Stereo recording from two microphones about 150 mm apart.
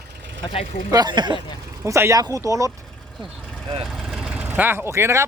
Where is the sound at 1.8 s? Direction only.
20° right (ahead or behind).